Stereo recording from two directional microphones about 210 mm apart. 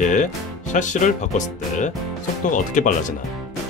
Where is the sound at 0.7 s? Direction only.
35° left (ahead or behind).